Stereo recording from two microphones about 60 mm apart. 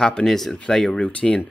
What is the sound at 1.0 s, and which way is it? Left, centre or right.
Speech, centre.